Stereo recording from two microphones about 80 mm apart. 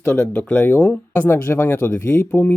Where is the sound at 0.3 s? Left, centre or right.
Centre.